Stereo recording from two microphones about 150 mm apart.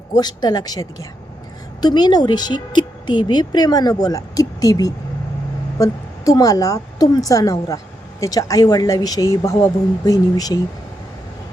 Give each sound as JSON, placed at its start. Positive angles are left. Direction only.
{"t": 0.1, "sound": "a woman's voice", "side_deg": 25}